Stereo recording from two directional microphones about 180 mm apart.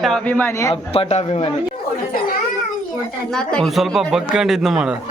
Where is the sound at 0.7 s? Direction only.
35° left (ahead or behind).